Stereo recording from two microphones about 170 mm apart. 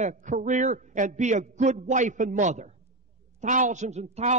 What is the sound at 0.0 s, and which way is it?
A man's voice, 45° right (ahead or behind).